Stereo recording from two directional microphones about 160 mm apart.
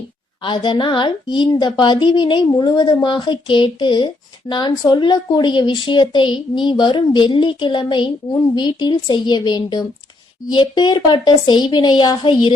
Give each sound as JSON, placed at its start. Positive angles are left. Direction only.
{"t": 0.4, "sound": "a woman's voice", "side_deg": 30}